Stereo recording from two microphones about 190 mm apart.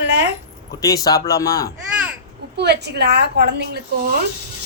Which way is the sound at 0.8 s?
20° left (ahead or behind).